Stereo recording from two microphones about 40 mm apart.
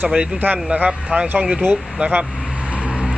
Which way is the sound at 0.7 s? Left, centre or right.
Right.